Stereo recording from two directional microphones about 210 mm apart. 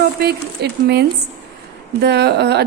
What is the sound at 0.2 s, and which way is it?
A woman's voice, 50° right (ahead or behind).